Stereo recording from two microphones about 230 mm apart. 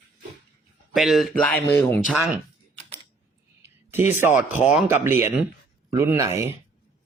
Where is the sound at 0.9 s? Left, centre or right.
Centre.